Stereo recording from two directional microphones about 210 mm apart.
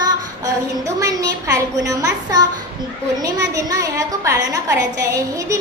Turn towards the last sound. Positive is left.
turn(degrees=-15)  # may be behind; listen again after turning